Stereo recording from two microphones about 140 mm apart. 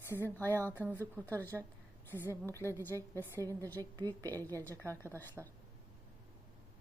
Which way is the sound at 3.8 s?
30° right (ahead or behind).